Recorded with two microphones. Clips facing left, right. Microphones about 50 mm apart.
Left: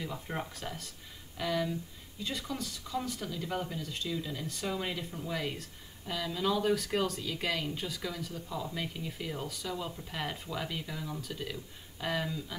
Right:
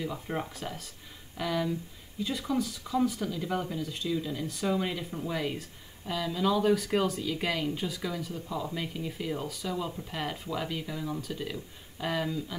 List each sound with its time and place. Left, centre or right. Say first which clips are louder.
0.0 s speech: right 4 dB; centre
5.1 s speech: right 3 dB; centre
5.4 s speech: right 4 dB; centre